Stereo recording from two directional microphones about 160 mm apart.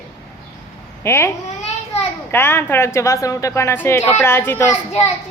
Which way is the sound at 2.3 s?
15° left (ahead or behind).